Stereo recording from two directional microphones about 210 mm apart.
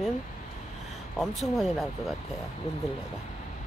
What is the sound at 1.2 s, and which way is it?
Speech, centre (ahead or behind).